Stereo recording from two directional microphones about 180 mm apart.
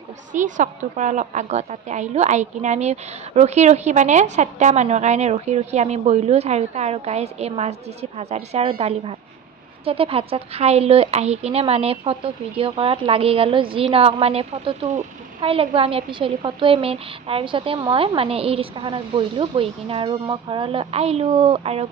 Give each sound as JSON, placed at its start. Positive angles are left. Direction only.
{"t": 0.3, "sound": "a woman's voice", "side_deg": -45}